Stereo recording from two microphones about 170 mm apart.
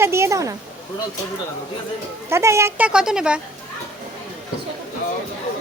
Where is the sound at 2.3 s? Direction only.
15° right (ahead or behind).